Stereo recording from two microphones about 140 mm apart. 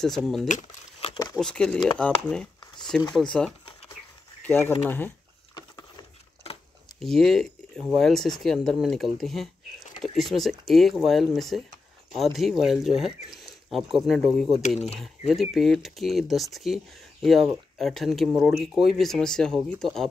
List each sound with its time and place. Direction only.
0.0 s speech: centre (ahead or behind)
4.4 s speech: 15° left (ahead or behind)
5.5 s rowboat: 30° left (ahead or behind)
6.4 s a sound: 45° left (ahead or behind)
7.0 s speech: 5° left (ahead or behind)